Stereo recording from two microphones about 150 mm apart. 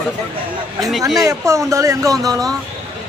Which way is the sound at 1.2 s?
20° right (ahead or behind).